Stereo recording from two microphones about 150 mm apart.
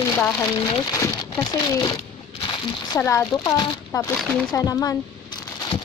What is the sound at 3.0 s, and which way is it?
A woman's voice, 20° left (ahead or behind).